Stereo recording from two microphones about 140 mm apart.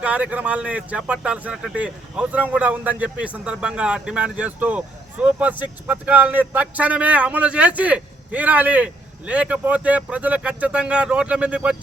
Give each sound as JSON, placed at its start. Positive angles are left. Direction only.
{"t": 0.0, "sound": "speech", "side_deg": -10}